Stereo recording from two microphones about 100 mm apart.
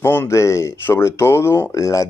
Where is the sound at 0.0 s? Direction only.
25° left (ahead or behind).